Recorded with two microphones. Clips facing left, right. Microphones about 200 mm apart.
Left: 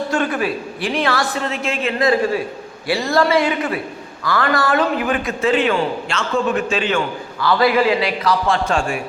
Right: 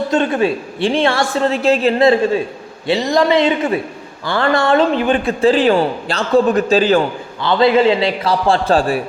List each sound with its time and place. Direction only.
0.1 s a woman's voice: 25° right (ahead or behind)
7.4 s a woman's voice: 25° right (ahead or behind)